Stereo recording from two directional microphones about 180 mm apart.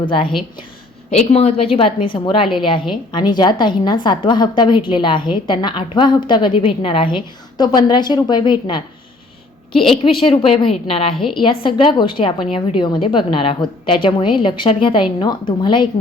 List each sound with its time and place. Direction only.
0.0 s a woman's voice: 30° left (ahead or behind)
10.0 s a woman's voice: 30° left (ahead or behind)
11.2 s a woman's voice: centre (ahead or behind)
11.4 s a woman's voice: 25° left (ahead or behind)